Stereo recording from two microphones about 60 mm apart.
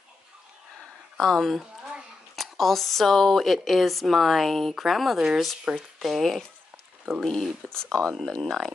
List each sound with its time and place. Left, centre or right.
1.1 s speech: centre
1.6 s a sound: centre
2.3 s speech: centre